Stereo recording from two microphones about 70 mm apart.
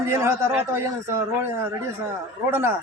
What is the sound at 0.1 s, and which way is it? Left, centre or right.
Speech, right.